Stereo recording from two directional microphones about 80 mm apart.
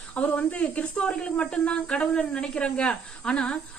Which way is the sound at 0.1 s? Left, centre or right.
Centre.